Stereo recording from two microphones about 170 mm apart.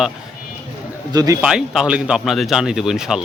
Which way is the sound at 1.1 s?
20° right (ahead or behind).